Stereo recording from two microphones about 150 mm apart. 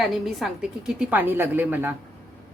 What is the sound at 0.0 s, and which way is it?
A woman's voice, centre (ahead or behind).